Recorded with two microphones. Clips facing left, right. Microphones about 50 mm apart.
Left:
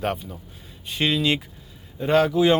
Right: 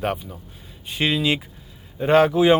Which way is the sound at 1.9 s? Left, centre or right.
Right.